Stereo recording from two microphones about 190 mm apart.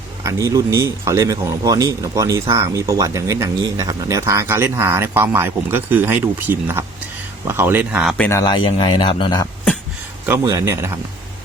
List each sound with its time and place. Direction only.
0.2 s speech: 15° right (ahead or behind)
8.2 s speech: 15° left (ahead or behind)
10.2 s speech: 15° right (ahead or behind)